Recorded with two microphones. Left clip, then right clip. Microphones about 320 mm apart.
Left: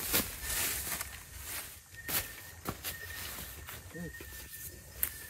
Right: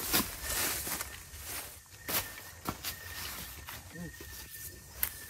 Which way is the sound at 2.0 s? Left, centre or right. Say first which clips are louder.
Right 2 dB; centre.